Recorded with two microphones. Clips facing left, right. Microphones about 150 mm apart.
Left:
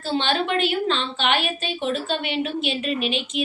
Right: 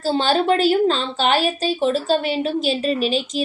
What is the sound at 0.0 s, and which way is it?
A woman's voice, 40° right (ahead or behind).